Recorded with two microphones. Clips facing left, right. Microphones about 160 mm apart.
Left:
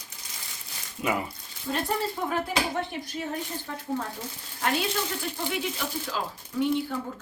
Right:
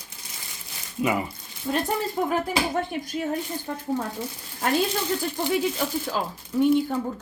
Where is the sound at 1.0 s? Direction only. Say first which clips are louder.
Right 4 dB; centre (ahead or behind).